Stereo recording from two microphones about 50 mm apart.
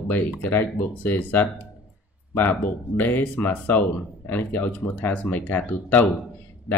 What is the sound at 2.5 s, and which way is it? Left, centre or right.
Speech, left.